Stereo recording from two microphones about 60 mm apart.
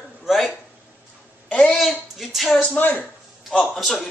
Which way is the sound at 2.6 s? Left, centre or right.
Left.